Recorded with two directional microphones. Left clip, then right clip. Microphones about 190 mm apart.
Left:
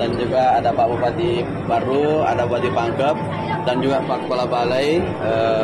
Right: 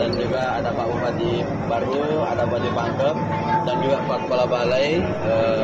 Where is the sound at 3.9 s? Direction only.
55° left (ahead or behind).